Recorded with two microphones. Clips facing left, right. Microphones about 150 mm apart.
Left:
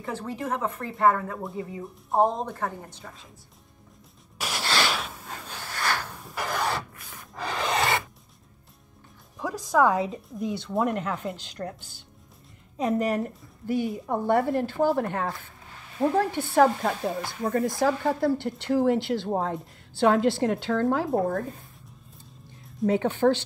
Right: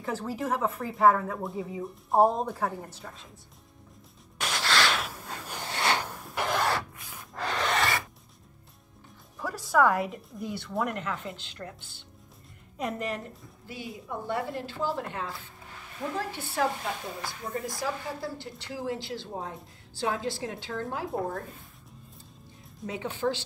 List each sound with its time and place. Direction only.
0.0 s speech: centre (ahead or behind)
4.4 s a sound: 10° left (ahead or behind)
4.9 s snort: centre (ahead or behind)
5.5 s a sound: 20° right (ahead or behind)
6.4 s a sound: centre (ahead or behind)
7.3 s rub: 5° left (ahead or behind)
7.7 s filing: 20° left (ahead or behind)
9.4 s a sound: 20° left (ahead or behind)
10.4 s speech: 20° left (ahead or behind)
10.8 s speech: 35° left (ahead or behind)
13.7 s speech: 55° left (ahead or behind)
17.4 s a woman's voice: 65° left (ahead or behind)
22.8 s speech: 60° left (ahead or behind)